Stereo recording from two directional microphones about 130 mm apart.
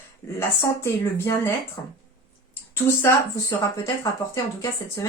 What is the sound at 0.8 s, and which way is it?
Speech, 20° left (ahead or behind).